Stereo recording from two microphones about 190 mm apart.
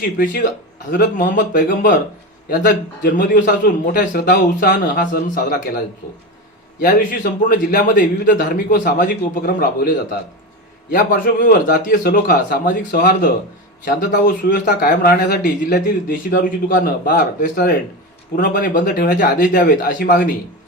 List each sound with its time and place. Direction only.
0.9 s speech: 50° left (ahead or behind)
10.9 s speech: 50° left (ahead or behind)